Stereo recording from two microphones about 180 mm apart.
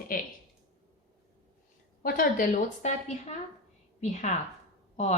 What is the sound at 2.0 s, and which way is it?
A woman's voice, 50° left (ahead or behind).